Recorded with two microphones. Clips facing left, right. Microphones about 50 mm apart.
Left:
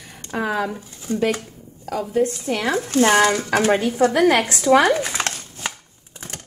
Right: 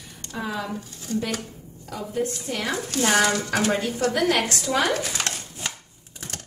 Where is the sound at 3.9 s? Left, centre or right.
Left.